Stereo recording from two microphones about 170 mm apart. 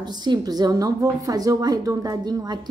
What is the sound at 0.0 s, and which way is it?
A woman's voice, 25° right (ahead or behind).